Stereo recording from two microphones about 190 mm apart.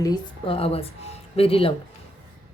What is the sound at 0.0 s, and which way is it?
A woman's voice, 25° left (ahead or behind).